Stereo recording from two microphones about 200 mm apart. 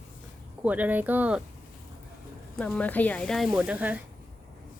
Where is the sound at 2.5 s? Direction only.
5° left (ahead or behind).